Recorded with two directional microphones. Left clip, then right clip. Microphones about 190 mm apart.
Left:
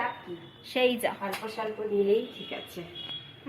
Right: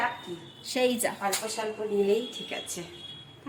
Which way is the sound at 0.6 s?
15° right (ahead or behind).